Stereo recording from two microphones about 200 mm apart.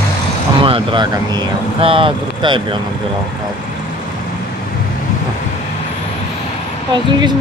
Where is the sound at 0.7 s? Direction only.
25° right (ahead or behind).